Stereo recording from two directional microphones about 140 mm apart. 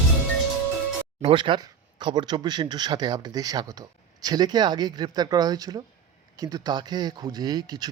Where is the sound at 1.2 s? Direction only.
40° right (ahead or behind).